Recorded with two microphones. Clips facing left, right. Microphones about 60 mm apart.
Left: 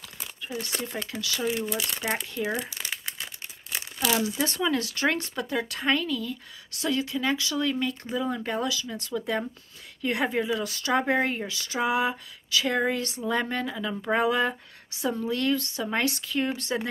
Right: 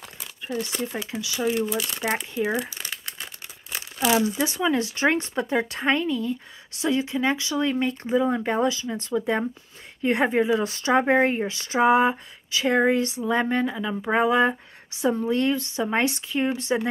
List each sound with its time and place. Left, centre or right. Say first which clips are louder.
0.6 s speech: right 4 dB; centre
1.7 s speech: right 3 dB; centre
4.2 s speech: right 3 dB; centre